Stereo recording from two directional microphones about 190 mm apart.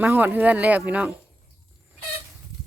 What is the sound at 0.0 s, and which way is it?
Speech, 10° right (ahead or behind).